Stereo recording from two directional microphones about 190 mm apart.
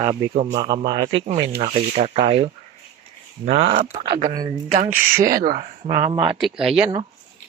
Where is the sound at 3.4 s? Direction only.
35° right (ahead or behind).